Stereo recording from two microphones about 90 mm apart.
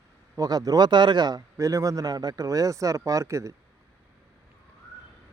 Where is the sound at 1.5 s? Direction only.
35° right (ahead or behind).